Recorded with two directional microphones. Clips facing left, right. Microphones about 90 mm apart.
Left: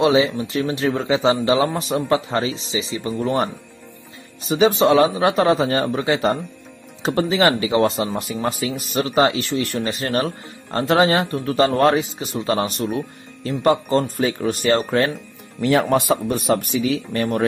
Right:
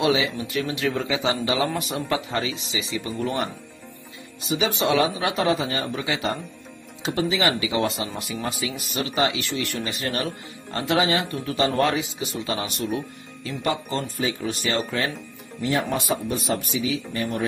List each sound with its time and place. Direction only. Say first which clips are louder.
0.0 s speech: left 6 dB; 35° left (ahead or behind)
15.6 s speech: left 7 dB; 75° left (ahead or behind)
15.9 s speech: left 7 dB; 55° left (ahead or behind)